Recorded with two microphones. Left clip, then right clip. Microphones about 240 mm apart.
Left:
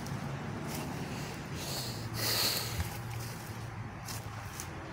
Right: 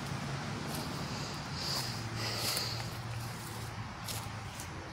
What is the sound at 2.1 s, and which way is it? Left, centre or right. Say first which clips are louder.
Snort: left 7 dB; left.